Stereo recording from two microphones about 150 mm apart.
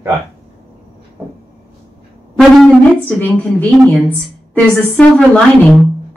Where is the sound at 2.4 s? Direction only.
5° left (ahead or behind).